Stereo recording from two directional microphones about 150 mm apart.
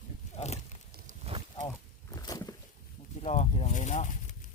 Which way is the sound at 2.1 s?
25° left (ahead or behind).